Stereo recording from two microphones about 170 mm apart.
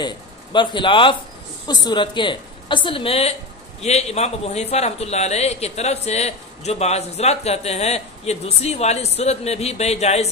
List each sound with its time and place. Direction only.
0.0 s a woman's voice: 25° left (ahead or behind)